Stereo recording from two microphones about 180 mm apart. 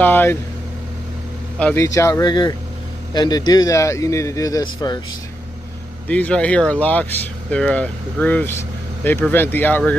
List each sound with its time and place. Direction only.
0.0 s speech: 10° left (ahead or behind)
1.6 s a man's voice: 15° left (ahead or behind)
6.0 s speech: 5° left (ahead or behind)